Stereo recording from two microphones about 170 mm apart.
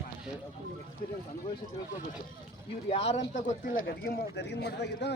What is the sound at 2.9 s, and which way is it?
Speech, 35° left (ahead or behind).